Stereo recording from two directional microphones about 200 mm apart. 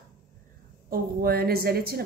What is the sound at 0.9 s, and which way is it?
A woman's voice, 50° right (ahead or behind).